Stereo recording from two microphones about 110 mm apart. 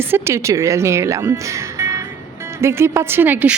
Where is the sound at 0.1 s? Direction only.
25° right (ahead or behind).